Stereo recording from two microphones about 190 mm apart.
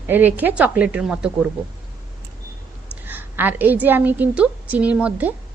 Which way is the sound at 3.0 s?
10° right (ahead or behind).